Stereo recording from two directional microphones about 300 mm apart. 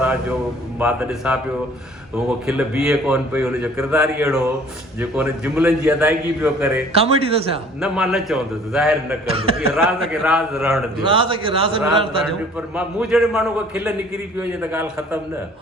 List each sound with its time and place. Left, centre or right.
0.0 s a man's voice: centre
2.5 s a man's voice: centre
6.9 s speech: centre
7.8 s a man's voice: centre
9.3 s a man's voice: centre
10.1 s a man's voice: centre
11.0 s a man's voice: centre
12.5 s a man's voice: centre